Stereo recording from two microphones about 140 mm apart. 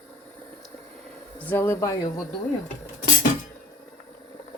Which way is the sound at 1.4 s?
15° left (ahead or behind).